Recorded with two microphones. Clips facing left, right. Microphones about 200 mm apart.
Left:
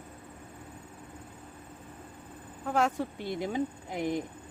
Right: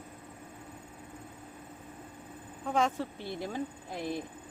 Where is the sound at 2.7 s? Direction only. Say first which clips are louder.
Left 1 dB; 5° left (ahead or behind).